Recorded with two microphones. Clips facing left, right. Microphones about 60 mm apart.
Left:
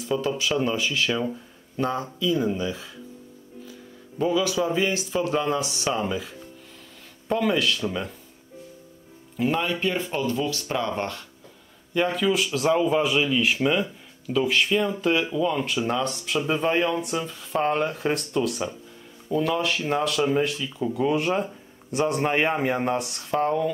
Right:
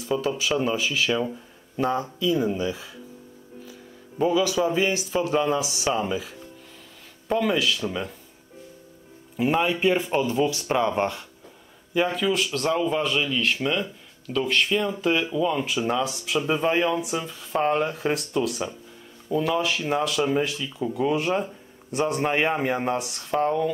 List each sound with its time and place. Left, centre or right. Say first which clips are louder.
0.0 s speech: even; centre
4.2 s speech: right 1 dB; centre
9.4 s speech: right 2 dB; centre
11.9 s speech: even; centre